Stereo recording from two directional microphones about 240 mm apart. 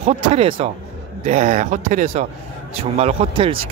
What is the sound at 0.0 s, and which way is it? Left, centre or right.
Speech, right.